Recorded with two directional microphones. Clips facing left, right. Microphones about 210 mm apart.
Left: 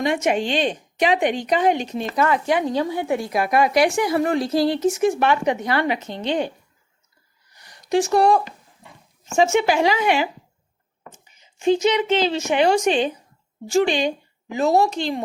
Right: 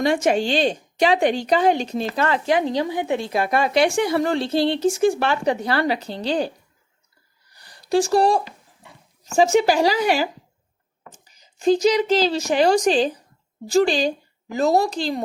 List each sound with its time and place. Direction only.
0.0 s a woman's voice: 35° right (ahead or behind)
7.5 s a sound: 35° right (ahead or behind)
9.2 s a woman's voice: 35° right (ahead or behind)